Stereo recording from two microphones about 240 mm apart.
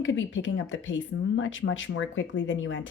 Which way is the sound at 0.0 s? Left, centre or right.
Left.